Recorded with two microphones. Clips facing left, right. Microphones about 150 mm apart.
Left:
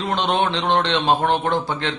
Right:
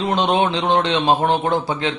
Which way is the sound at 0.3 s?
5° right (ahead or behind).